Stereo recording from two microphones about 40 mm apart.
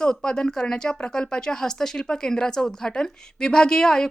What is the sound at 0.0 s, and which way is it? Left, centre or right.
Speech, centre.